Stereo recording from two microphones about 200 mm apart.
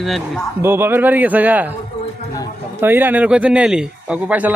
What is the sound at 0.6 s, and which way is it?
Speech, 10° right (ahead or behind).